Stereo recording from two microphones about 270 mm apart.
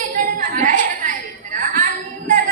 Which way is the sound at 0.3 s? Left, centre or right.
Right.